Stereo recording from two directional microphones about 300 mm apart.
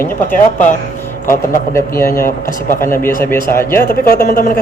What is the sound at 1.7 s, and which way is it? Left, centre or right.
Speech, centre.